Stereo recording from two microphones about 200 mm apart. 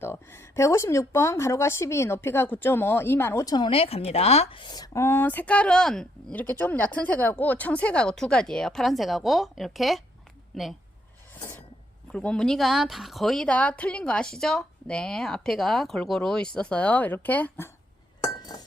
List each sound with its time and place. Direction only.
0.0 s speech: 10° left (ahead or behind)
12.1 s a woman's voice: 5° left (ahead or behind)
18.2 s chink: 20° left (ahead or behind)